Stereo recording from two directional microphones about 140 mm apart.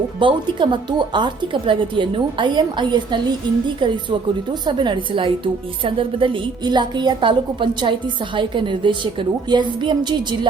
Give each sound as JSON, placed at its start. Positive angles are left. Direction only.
{"t": 0.2, "sound": "a woman's voice", "side_deg": -35}